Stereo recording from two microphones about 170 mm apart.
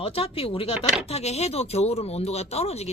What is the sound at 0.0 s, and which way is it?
A woman's voice, 35° left (ahead or behind).